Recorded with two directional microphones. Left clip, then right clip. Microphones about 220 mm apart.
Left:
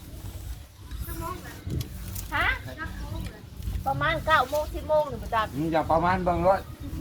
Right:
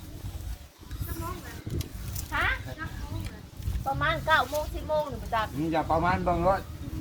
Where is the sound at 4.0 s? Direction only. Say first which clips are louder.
Left 1 dB; 25° left (ahead or behind).